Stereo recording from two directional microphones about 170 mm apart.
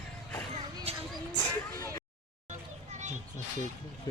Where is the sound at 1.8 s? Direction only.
20° left (ahead or behind).